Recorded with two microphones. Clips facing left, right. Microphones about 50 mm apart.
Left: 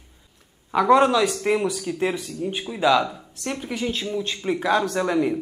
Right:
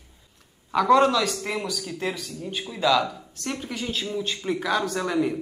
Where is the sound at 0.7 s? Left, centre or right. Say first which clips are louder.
Left 2 dB; centre.